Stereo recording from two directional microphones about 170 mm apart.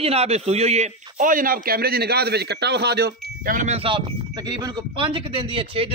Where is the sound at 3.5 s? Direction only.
40° right (ahead or behind).